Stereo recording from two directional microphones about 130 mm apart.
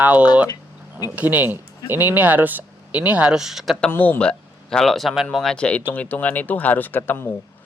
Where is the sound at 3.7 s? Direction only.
10° left (ahead or behind).